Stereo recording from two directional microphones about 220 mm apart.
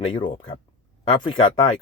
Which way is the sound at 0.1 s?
20° left (ahead or behind).